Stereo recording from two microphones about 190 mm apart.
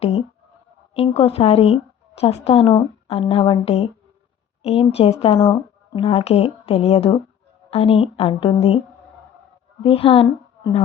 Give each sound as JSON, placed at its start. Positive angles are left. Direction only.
{"t": 0.0, "sound": "a sound", "side_deg": 35}
{"t": 0.9, "sound": "a woman's voice", "side_deg": 30}
{"t": 9.8, "sound": "speech", "side_deg": 30}